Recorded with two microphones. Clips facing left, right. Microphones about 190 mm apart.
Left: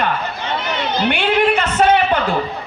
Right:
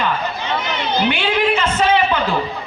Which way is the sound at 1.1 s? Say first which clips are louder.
Left 2 dB; 55° left (ahead or behind).